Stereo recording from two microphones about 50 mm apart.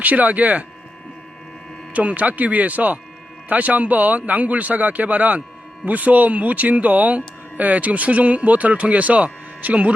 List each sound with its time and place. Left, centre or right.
0.0 s speech: right
1.9 s a man's voice: right